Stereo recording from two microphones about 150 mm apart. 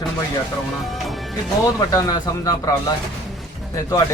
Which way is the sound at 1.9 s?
25° left (ahead or behind).